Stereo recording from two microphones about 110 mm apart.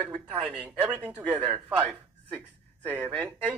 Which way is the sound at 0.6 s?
15° right (ahead or behind).